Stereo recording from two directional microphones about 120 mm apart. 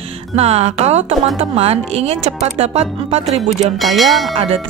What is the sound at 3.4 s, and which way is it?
Speech, centre (ahead or behind).